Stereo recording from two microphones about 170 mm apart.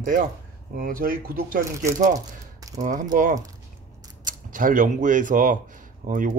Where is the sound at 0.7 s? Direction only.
55° right (ahead or behind).